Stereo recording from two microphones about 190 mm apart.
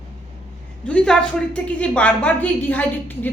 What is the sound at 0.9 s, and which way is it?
A woman's voice, 5° left (ahead or behind).